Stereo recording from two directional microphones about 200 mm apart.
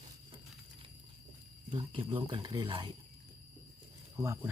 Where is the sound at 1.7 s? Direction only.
25° right (ahead or behind).